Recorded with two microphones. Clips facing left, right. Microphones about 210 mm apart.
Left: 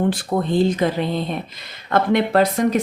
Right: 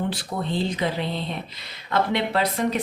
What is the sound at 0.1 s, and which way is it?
Speech, 50° left (ahead or behind).